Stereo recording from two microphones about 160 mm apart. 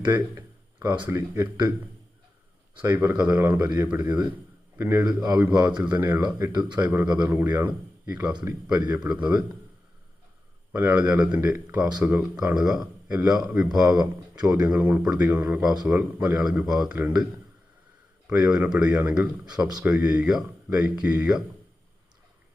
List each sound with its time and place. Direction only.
0.0 s a sound: 15° right (ahead or behind)
1.0 s a man's voice: 15° right (ahead or behind)
2.8 s a man's voice: 15° right (ahead or behind)
5.6 s a man's voice: 5° right (ahead or behind)
8.3 s a man's voice: 30° right (ahead or behind)
9.0 s a man's voice: 5° right (ahead or behind)
10.7 s a man's voice: 10° right (ahead or behind)
14.6 s a man's voice: 10° right (ahead or behind)
18.3 s speech: 20° right (ahead or behind)
18.5 s a man's voice: 5° right (ahead or behind)